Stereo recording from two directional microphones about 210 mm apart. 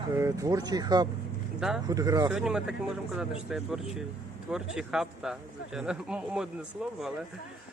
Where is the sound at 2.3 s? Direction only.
5° right (ahead or behind).